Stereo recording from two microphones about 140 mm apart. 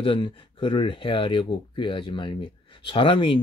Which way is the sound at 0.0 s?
35° left (ahead or behind).